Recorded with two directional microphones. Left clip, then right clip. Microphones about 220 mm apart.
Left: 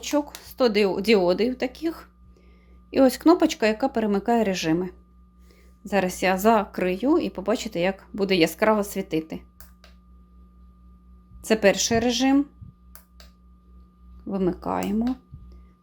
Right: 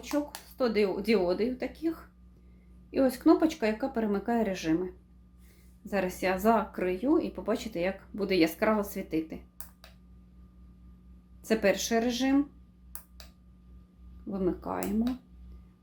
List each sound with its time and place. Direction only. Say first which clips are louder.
0.4 s speech: left 7 dB; 45° left (ahead or behind)
11.4 s speech: left 7 dB; 35° left (ahead or behind)
14.3 s speech: left 6 dB; 35° left (ahead or behind)